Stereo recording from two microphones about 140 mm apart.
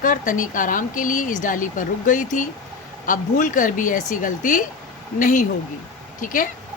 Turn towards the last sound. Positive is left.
turn(degrees=75)  # may be behind; listen again after turning